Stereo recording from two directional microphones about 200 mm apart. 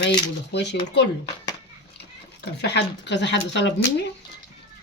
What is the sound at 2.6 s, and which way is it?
Speech, 60° left (ahead or behind).